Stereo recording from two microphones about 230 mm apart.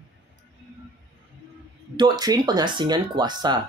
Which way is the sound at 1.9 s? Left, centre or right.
Centre.